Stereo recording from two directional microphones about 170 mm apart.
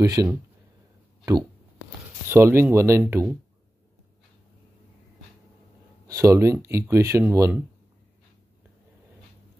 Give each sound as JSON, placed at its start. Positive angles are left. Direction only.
{"t": 0.0, "sound": "speech", "side_deg": -20}
{"t": 2.2, "sound": "speech", "side_deg": -15}
{"t": 6.0, "sound": "speech", "side_deg": -15}